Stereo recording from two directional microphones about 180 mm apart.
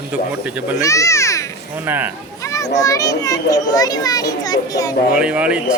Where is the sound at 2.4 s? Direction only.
15° left (ahead or behind).